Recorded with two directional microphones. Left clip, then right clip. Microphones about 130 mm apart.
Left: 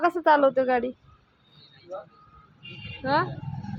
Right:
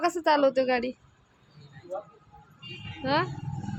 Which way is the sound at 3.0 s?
5° right (ahead or behind).